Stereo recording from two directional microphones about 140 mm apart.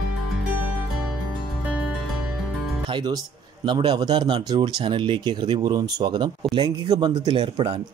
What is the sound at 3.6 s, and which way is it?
Speech, 35° right (ahead or behind).